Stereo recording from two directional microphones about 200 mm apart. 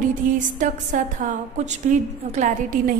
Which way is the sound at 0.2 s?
40° right (ahead or behind).